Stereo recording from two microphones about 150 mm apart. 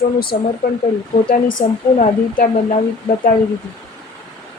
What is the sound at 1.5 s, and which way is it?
A woman's voice, 60° left (ahead or behind).